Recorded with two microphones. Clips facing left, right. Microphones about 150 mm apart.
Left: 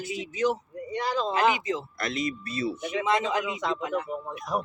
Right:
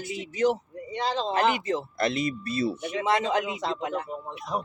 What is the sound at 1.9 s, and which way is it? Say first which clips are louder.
A man's voice: right 4 dB; 30° right (ahead or behind).